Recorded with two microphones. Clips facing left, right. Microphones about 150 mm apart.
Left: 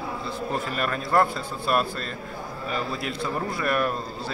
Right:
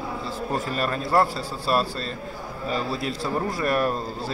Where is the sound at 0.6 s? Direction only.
30° right (ahead or behind).